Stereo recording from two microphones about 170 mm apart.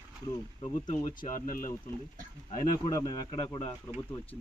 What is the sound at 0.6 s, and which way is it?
Speech, 40° left (ahead or behind).